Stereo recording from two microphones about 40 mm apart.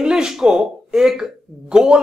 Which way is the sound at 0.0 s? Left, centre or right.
Right.